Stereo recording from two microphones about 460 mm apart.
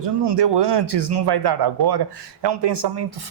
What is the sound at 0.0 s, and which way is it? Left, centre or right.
Speech, right.